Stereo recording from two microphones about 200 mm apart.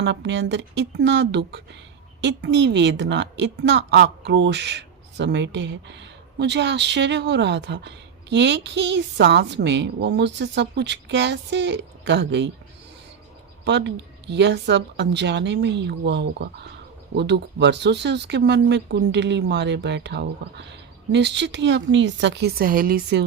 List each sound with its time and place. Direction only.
0.0 s a woman's voice: 60° right (ahead or behind)
13.7 s a woman's voice: 60° right (ahead or behind)